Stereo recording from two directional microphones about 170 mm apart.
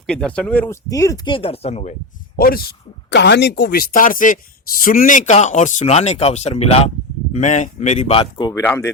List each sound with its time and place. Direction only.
0.1 s speech: 5° left (ahead or behind); by 2.0 s 40° left (ahead or behind)
2.3 s speech: 60° left (ahead or behind); by 8.6 s 25° left (ahead or behind)
8.6 s speech: 15° left (ahead or behind)